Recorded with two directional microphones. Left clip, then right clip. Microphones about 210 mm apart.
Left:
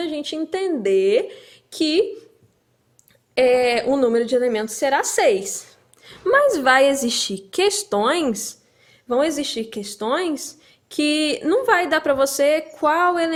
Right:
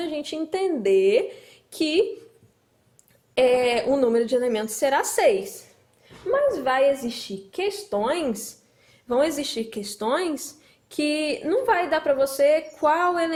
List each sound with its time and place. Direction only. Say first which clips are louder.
0.0 s speech: left 3 dB; 15° left (ahead or behind)
3.3 s speech: left 3 dB; 15° left (ahead or behind)
6.5 s a woman's voice: left 5 dB; 35° left (ahead or behind); by 13.3 s 15° left (ahead or behind)